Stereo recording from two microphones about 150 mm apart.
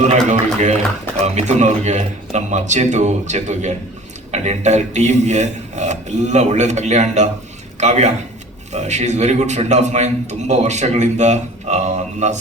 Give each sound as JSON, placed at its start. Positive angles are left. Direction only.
{"t": 0.3, "sound": "a man's voice", "side_deg": -50}